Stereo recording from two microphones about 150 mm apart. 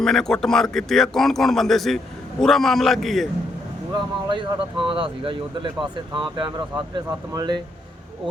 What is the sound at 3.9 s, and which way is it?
Speech, 35° right (ahead or behind).